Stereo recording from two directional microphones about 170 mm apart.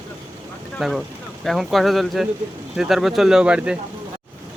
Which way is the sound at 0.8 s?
Centre (ahead or behind).